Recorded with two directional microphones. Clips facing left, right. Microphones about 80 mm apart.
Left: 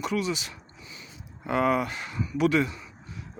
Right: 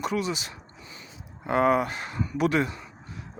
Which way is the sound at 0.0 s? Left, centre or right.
Right.